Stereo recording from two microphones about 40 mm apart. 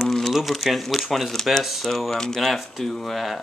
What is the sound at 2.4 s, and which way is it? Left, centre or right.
Speech, centre.